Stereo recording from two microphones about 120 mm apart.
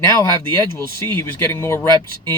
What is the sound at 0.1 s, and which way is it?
Speech, 20° left (ahead or behind).